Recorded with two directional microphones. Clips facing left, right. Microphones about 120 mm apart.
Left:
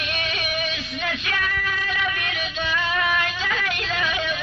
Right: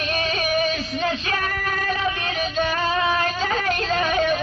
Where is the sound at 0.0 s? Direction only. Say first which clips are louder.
Right 5 dB; 35° right (ahead or behind).